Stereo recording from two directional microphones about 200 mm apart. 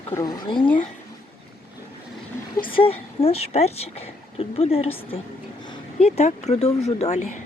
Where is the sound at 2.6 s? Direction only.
25° left (ahead or behind).